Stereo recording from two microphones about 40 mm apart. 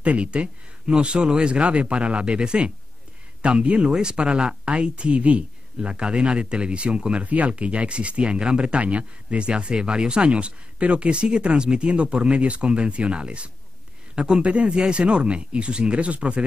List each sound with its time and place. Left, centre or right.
0.0 s speech: right